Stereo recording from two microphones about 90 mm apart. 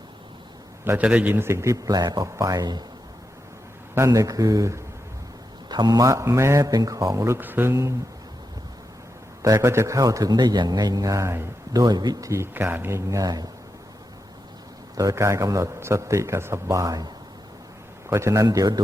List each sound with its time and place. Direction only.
0.9 s a man's voice: 15° right (ahead or behind); by 2.2 s 50° right (ahead or behind)
2.2 s a man's voice: 35° right (ahead or behind)
3.9 s a man's voice: 35° right (ahead or behind)
5.6 s a man's voice: 50° right (ahead or behind)
6.0 s a man's voice: 35° right (ahead or behind)
7.3 s speech: 20° right (ahead or behind)
9.4 s a man's voice: 35° right (ahead or behind)
11.7 s speech: 45° right (ahead or behind)
12.3 s speech: 30° right (ahead or behind)
13.1 s speech: 40° right (ahead or behind)
14.9 s a man's voice: 35° right (ahead or behind)
18.1 s a man's voice: 35° right (ahead or behind)